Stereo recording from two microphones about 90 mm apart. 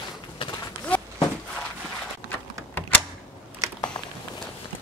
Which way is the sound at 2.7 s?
20° left (ahead or behind).